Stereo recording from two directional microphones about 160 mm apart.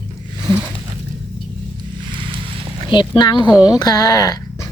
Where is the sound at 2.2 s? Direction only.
35° right (ahead or behind).